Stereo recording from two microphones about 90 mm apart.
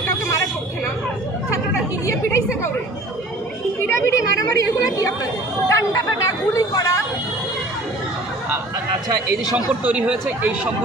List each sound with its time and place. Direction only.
3.8 s a woman's voice: 30° left (ahead or behind)
9.8 s speech: 15° right (ahead or behind)